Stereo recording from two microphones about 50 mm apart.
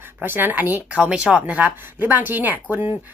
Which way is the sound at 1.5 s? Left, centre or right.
Right.